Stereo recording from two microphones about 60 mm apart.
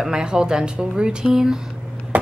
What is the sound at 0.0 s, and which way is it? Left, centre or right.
Speech, centre.